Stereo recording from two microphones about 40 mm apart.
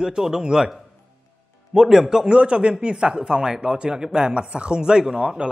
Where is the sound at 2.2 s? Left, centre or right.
Right.